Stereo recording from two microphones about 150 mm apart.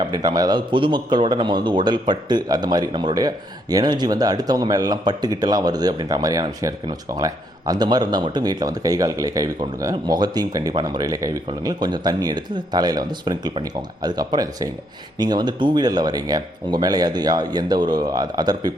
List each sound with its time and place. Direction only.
0.0 s a man's voice: 25° right (ahead or behind)